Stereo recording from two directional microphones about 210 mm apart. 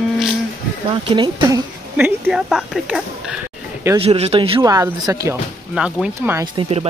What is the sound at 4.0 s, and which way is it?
Speech, 30° right (ahead or behind).